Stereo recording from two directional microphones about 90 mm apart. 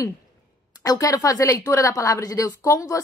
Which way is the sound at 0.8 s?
40° left (ahead or behind).